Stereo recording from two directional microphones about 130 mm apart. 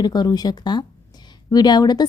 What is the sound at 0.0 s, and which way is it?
Speech, 30° left (ahead or behind).